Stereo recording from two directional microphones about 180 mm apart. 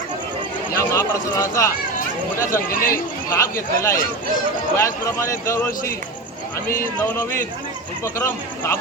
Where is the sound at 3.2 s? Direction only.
15° left (ahead or behind).